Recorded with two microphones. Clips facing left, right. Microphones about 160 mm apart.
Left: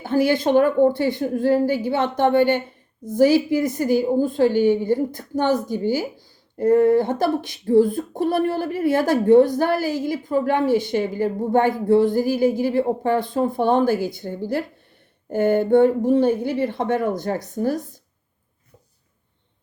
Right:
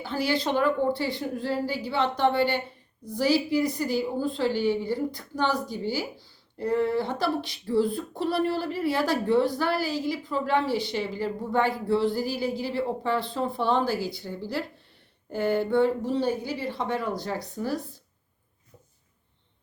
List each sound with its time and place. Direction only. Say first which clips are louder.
0.0 s a woman's voice: left 8 dB; 50° left (ahead or behind)